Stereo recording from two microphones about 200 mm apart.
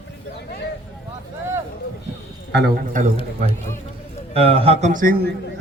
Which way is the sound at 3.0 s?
40° right (ahead or behind).